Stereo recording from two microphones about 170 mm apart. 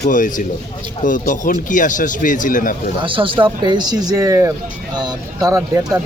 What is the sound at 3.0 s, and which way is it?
Speech, 30° right (ahead or behind).